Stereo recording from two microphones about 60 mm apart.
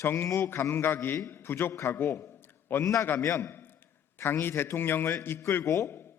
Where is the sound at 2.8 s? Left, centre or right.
Left.